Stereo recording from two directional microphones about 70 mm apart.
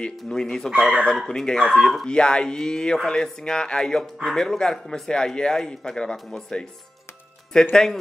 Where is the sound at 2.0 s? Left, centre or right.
Centre.